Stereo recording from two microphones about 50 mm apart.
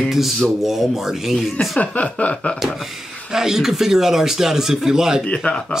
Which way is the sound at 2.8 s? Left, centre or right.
Centre.